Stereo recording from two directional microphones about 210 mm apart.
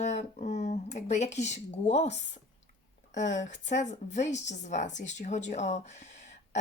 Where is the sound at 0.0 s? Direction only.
35° left (ahead or behind).